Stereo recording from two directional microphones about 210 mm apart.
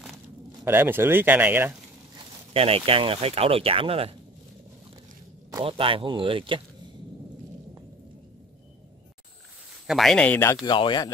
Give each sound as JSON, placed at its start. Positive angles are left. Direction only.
{"t": 0.7, "sound": "speech", "side_deg": -10}
{"t": 2.5, "sound": "speech", "side_deg": -25}
{"t": 5.5, "sound": "speech", "side_deg": -25}
{"t": 9.8, "sound": "speech", "side_deg": 0}